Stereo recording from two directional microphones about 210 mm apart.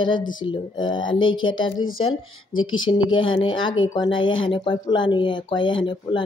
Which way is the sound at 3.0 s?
70° left (ahead or behind).